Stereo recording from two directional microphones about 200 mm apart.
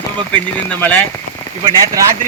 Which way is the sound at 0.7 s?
10° left (ahead or behind).